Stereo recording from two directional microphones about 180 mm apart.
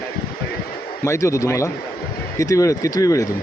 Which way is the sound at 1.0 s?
15° left (ahead or behind).